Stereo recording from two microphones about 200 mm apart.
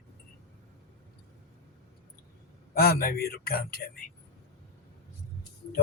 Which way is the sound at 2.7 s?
50° left (ahead or behind).